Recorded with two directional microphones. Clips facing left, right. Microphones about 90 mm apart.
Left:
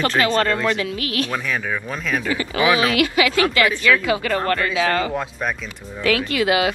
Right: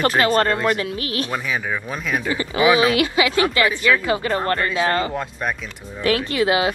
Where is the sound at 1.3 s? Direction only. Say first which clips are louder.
Even; 5° right (ahead or behind).